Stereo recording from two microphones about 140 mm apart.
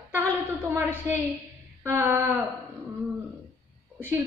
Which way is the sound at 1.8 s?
15° right (ahead or behind).